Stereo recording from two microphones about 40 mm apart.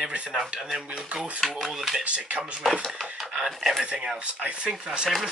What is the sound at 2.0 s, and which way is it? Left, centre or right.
Speech, right.